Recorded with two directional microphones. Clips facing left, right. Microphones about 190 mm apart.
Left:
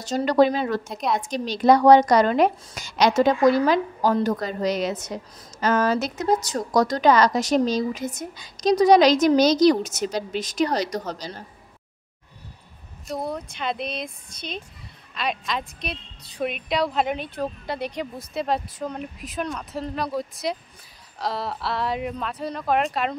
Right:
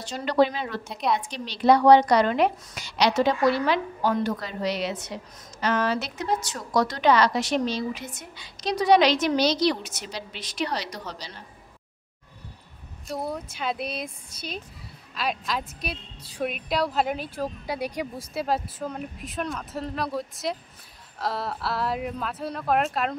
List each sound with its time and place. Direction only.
0.0 s a woman's voice: 40° left (ahead or behind)
13.1 s a woman's voice: 5° right (ahead or behind)